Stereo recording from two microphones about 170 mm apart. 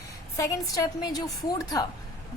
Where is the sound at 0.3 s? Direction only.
20° left (ahead or behind).